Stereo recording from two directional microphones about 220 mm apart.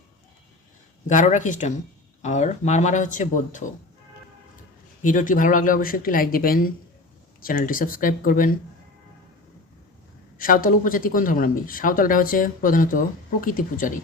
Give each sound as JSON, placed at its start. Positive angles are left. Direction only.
{"t": 1.0, "sound": "speech", "side_deg": 35}
{"t": 5.0, "sound": "speech", "side_deg": 35}
{"t": 10.3, "sound": "speech", "side_deg": 40}